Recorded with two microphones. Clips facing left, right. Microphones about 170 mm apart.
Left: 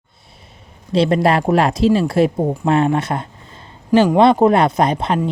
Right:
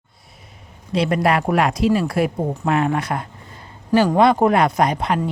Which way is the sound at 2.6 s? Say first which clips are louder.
Left 3 dB; 30° left (ahead or behind).